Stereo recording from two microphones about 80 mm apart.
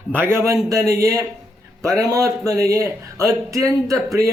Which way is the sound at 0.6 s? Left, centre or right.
Right.